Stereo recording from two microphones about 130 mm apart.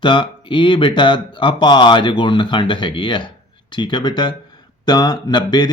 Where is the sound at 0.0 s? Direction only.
40° left (ahead or behind).